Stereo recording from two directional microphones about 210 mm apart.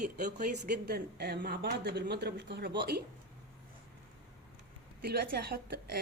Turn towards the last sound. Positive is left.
turn(degrees=-45)  # may be behind; listen again after turning